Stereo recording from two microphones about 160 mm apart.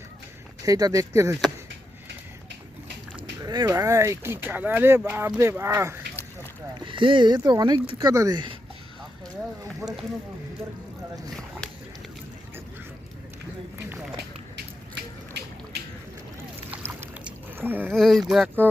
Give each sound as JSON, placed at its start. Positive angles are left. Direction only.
{"t": 0.6, "sound": "speech", "side_deg": -20}
{"t": 3.4, "sound": "speech", "side_deg": -25}
{"t": 6.7, "sound": "speech", "side_deg": -30}
{"t": 9.8, "sound": "speech", "side_deg": -20}
{"t": 16.7, "sound": "boat", "side_deg": -10}
{"t": 17.9, "sound": "speech", "side_deg": 0}